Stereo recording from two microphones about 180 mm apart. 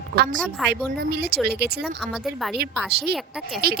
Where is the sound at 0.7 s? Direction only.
60° right (ahead or behind).